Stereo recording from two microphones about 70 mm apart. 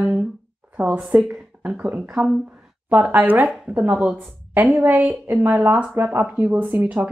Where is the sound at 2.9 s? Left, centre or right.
Centre.